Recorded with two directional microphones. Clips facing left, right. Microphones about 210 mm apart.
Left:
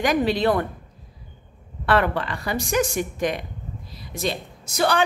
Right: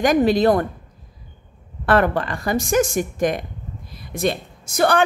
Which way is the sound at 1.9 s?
45° right (ahead or behind).